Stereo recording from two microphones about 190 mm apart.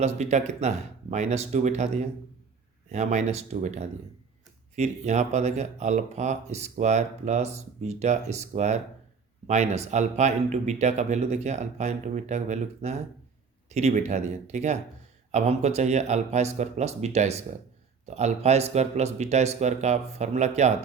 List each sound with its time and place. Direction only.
0.0 s speech: 35° right (ahead or behind)